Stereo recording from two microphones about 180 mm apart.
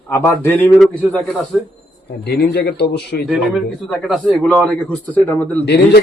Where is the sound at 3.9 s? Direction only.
Centre (ahead or behind).